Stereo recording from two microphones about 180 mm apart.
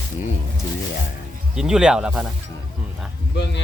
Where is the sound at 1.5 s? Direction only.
5° right (ahead or behind).